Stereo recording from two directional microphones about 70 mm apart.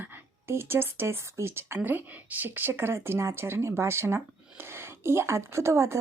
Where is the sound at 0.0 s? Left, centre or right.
Right.